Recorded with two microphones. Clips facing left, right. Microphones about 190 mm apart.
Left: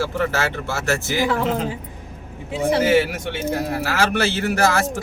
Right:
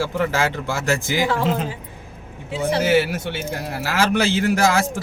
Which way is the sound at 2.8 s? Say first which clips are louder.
Left 1 dB; 5° right (ahead or behind).